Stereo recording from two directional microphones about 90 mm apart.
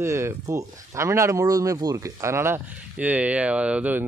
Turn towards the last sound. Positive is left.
turn(degrees=-15)  # may be behind; listen again after turning